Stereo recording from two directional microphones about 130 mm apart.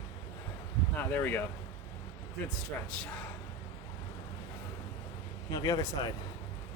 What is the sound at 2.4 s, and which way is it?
Speech, 5° left (ahead or behind).